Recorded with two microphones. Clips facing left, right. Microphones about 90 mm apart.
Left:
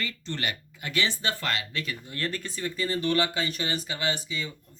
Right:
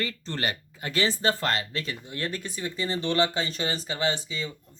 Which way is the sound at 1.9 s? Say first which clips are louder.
Even; 20° right (ahead or behind).